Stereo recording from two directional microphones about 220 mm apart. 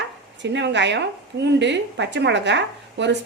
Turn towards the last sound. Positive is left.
turn(degrees=-55)  # may be behind; listen again after turning